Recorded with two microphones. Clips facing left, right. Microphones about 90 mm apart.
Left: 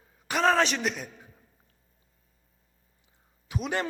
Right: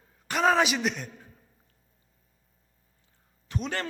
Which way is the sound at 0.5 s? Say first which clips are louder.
Right 1 dB; 5° right (ahead or behind).